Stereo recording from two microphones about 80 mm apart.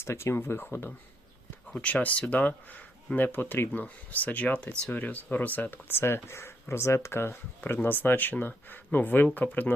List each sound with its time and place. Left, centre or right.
0.0 s speech: left
1.7 s speech: centre